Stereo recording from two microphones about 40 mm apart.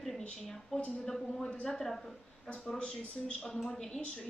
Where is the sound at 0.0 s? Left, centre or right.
Centre.